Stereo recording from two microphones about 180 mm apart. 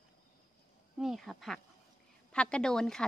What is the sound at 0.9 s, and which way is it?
A woman's voice, centre (ahead or behind).